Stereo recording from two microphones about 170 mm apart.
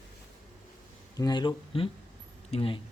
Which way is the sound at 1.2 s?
25° left (ahead or behind).